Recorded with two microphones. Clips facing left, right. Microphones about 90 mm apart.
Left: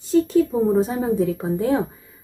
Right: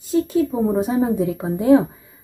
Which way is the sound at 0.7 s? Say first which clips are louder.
Right 1 dB; 15° right (ahead or behind).